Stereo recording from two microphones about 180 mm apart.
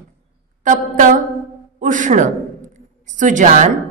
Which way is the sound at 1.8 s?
45° right (ahead or behind).